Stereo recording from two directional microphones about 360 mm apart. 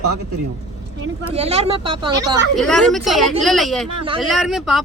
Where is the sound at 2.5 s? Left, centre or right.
Centre.